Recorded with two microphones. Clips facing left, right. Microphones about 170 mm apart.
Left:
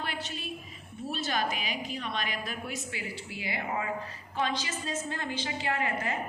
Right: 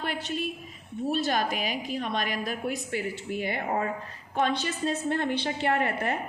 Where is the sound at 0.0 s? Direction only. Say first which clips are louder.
Right 6 dB; 50° right (ahead or behind).